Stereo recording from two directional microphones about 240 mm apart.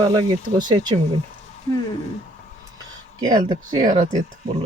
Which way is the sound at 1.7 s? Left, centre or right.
Centre.